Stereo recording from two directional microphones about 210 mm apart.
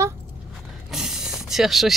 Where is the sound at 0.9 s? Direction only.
Centre (ahead or behind).